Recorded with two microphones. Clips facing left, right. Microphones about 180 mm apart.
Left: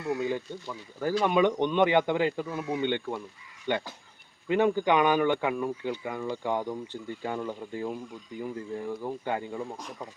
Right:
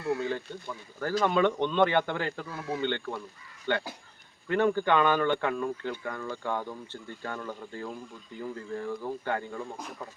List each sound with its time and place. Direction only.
0.2 s speech: 15° left (ahead or behind)